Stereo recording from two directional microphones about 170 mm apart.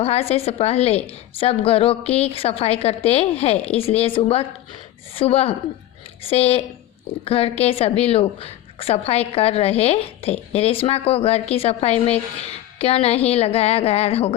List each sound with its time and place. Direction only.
0.0 s a woman's voice: 35° left (ahead or behind)